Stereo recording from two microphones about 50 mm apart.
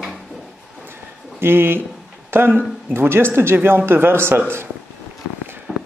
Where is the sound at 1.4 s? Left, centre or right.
Right.